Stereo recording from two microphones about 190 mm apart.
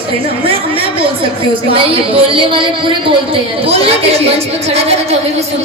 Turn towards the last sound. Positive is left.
turn(degrees=-35)  # may be behind; listen again after turning